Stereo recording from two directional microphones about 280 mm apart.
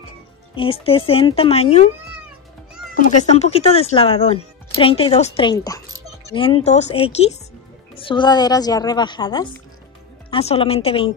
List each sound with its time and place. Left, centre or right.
0.6 s speech: centre
2.9 s a woman's voice: left